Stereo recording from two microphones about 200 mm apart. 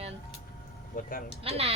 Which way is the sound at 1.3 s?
30° right (ahead or behind).